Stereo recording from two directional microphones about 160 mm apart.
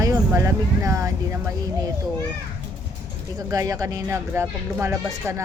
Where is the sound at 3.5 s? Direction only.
20° right (ahead or behind).